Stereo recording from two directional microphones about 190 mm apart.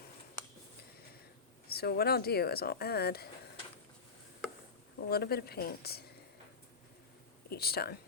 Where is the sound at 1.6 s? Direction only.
55° left (ahead or behind).